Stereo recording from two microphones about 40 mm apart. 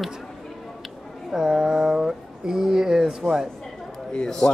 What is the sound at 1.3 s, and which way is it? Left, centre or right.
Speech, centre.